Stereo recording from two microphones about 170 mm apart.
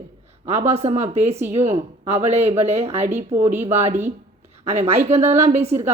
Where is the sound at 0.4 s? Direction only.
40° right (ahead or behind).